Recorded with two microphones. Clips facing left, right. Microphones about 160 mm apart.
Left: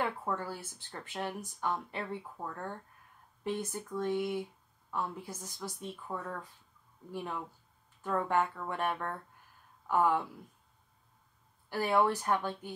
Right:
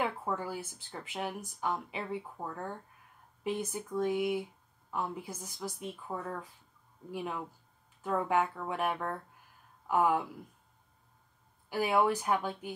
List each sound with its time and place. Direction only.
0.0 s speech: 10° right (ahead or behind)
11.7 s speech: 10° right (ahead or behind)